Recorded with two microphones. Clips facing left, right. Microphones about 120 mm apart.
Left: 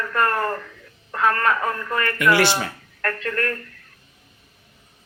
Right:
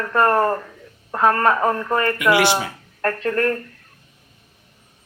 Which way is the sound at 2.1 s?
15° right (ahead or behind).